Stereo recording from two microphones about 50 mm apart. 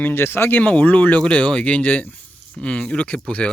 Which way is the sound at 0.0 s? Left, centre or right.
Left.